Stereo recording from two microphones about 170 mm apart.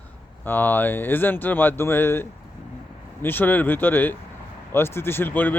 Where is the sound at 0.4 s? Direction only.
10° left (ahead or behind).